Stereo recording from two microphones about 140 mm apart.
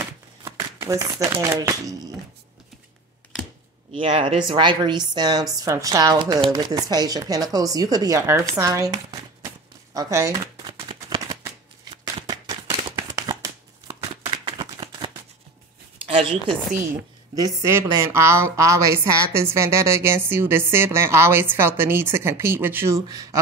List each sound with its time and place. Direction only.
0.6 s shuffling cards: 20° right (ahead or behind)
1.4 s speech: 20° right (ahead or behind)
3.9 s speech: 40° right (ahead or behind); by 9.5 s 25° right (ahead or behind)
9.9 s a sound: 25° right (ahead or behind)
11.1 s shuffling cards: 25° right (ahead or behind)
12.3 s a sound: 30° right (ahead or behind)
16.1 s speech: 40° right (ahead or behind)
17.4 s speech: 20° right (ahead or behind)